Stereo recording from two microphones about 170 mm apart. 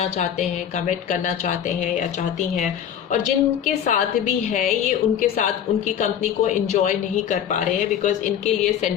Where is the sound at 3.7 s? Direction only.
45° left (ahead or behind).